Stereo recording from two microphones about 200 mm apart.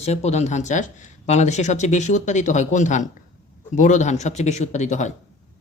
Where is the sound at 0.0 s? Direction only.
35° left (ahead or behind).